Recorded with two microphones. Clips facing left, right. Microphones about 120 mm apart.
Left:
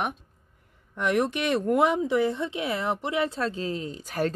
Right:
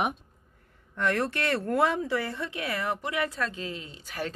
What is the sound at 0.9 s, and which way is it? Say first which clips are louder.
Speech: left 3 dB; 15° left (ahead or behind).